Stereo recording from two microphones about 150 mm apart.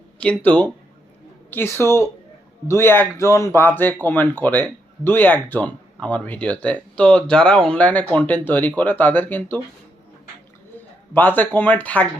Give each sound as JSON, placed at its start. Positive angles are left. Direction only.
{"t": 0.2, "sound": "speech", "side_deg": 10}
{"t": 11.1, "sound": "speech", "side_deg": 10}